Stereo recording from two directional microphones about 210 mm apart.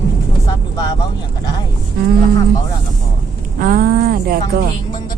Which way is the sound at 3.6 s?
40° right (ahead or behind).